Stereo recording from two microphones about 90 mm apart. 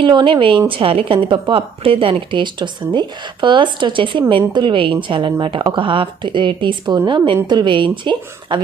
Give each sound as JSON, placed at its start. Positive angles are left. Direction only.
{"t": 0.0, "sound": "a woman's voice", "side_deg": -60}
{"t": 0.7, "sound": "a woman's voice", "side_deg": -85}